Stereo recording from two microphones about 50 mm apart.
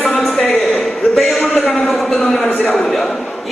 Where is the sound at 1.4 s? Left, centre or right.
Centre.